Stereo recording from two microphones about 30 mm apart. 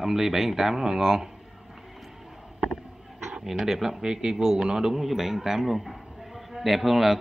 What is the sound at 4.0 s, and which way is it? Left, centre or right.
A man's voice, right.